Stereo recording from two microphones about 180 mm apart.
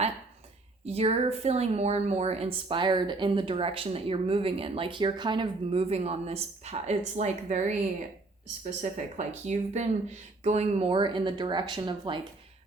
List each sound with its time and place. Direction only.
0.9 s a woman's voice: 35° right (ahead or behind)
8.8 s a woman's voice: 40° right (ahead or behind)